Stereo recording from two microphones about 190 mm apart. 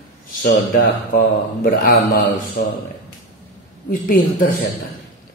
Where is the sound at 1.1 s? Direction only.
50° left (ahead or behind).